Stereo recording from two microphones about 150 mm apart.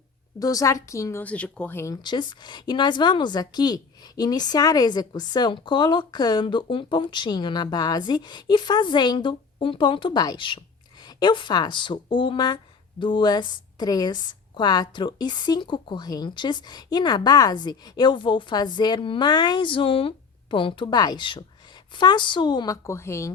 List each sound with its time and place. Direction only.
0.3 s speech: 25° left (ahead or behind)